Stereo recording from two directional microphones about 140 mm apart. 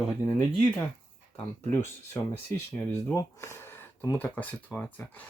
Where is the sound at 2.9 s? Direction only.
20° left (ahead or behind).